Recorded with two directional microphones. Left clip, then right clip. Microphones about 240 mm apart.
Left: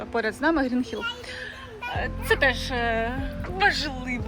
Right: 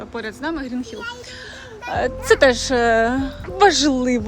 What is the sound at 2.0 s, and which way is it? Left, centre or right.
Speech, right.